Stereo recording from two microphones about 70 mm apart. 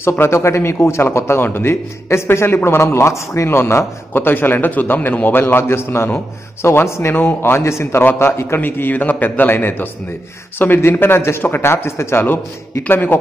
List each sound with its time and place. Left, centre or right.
0.2 s a man's voice: left